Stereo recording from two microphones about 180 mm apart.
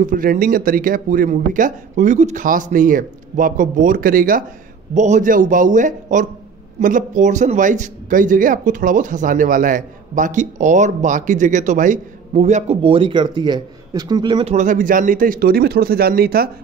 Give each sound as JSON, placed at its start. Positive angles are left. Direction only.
{"t": 0.0, "sound": "a man's voice", "side_deg": -50}
{"t": 14.5, "sound": "speech", "side_deg": -45}